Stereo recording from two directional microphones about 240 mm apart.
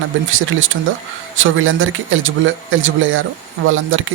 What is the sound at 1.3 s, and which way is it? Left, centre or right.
Speech, right.